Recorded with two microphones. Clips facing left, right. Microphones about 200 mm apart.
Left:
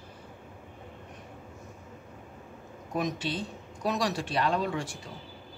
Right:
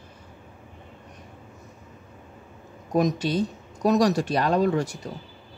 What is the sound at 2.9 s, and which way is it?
Speech, 40° right (ahead or behind).